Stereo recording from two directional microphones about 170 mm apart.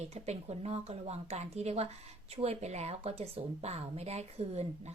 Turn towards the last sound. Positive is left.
turn(degrees=-40)  # may be behind; listen again after turning